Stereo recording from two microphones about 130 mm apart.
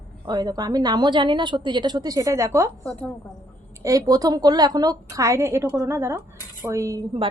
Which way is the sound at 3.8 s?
25° right (ahead or behind).